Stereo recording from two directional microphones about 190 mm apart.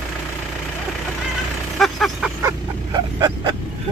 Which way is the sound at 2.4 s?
20° right (ahead or behind).